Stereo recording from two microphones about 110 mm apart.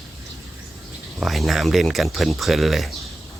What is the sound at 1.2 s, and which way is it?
Speech, centre (ahead or behind).